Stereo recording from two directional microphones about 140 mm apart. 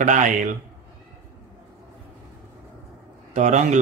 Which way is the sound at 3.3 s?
60° right (ahead or behind).